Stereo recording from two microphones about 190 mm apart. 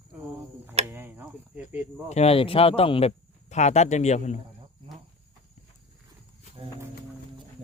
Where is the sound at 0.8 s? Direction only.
10° right (ahead or behind).